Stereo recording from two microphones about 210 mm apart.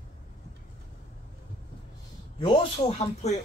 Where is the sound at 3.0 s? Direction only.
35° left (ahead or behind).